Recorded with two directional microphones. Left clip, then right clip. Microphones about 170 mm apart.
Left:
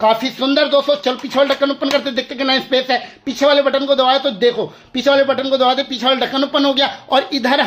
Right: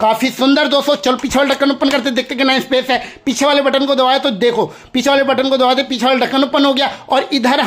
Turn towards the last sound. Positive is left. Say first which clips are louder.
# right 1 dB
turn(degrees=-25)  # may be behind; listen again after turning